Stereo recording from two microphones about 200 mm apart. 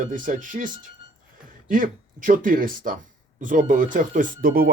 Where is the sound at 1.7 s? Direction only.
40° right (ahead or behind).